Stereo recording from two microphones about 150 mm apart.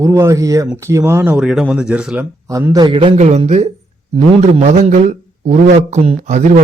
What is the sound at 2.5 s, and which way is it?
Speech, 20° right (ahead or behind).